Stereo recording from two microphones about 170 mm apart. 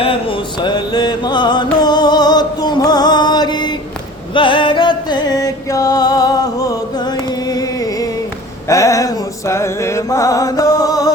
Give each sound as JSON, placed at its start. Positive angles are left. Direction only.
{"t": 0.0, "sound": "music", "side_deg": 30}